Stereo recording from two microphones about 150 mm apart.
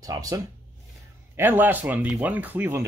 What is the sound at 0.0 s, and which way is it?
Speech, 25° right (ahead or behind).